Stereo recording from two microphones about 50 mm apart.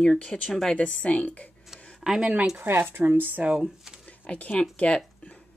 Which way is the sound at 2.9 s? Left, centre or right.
Right.